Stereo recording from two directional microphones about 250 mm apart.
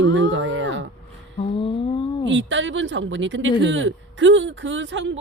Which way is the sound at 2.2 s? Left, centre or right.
Right.